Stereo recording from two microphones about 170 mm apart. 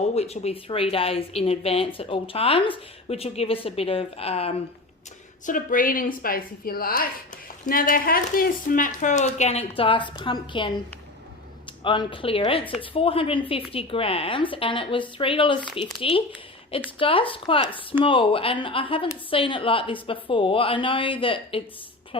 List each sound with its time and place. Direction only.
0.1 s speech: 40° left (ahead or behind)
5.5 s a woman's voice: 55° left (ahead or behind); by 10.7 s 30° left (ahead or behind)
11.8 s speech: 30° left (ahead or behind)